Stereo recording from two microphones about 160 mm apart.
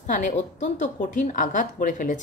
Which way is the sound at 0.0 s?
50° left (ahead or behind).